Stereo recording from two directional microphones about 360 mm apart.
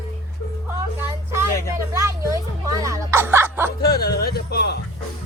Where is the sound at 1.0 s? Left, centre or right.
Centre.